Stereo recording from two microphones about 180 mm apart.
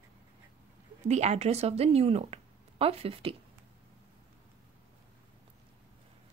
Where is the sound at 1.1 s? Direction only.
35° right (ahead or behind).